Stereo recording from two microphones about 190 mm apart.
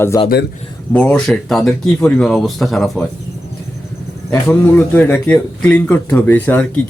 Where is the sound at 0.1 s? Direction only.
20° left (ahead or behind).